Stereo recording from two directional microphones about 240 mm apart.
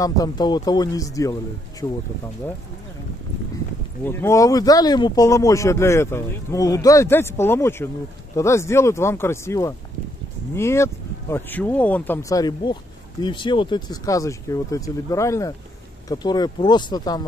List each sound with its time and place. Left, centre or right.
0.0 s speech: centre
4.0 s speech: centre